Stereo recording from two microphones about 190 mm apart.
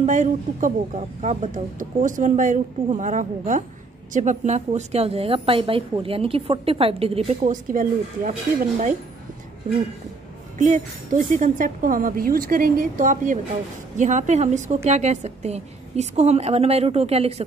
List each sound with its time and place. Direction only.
0.0 s speech: 40° right (ahead or behind)
10.6 s a woman's voice: 45° right (ahead or behind)